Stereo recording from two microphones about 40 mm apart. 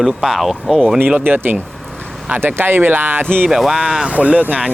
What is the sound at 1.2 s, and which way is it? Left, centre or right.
Speech, right.